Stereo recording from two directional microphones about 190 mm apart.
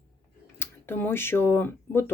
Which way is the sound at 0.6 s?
10° left (ahead or behind).